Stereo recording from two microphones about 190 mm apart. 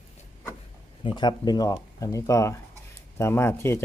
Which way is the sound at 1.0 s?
25° left (ahead or behind).